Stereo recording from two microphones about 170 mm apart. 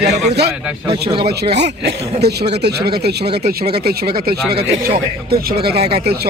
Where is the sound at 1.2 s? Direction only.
75° right (ahead or behind).